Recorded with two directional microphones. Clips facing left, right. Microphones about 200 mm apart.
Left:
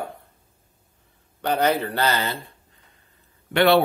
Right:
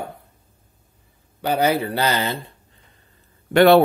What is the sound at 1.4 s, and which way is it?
Speech, 10° right (ahead or behind).